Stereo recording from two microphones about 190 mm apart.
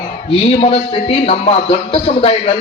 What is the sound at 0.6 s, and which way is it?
A man's voice, 30° left (ahead or behind).